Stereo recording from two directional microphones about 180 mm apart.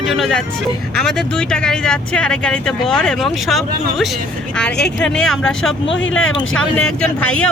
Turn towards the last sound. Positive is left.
turn(degrees=5)  # may be behind; listen again after turning